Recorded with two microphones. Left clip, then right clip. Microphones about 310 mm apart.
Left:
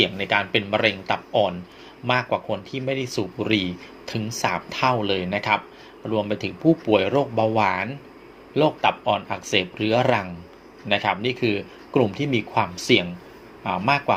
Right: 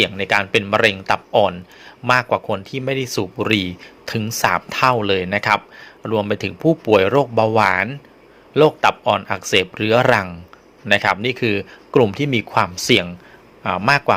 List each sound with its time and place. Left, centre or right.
0.0 s speech: right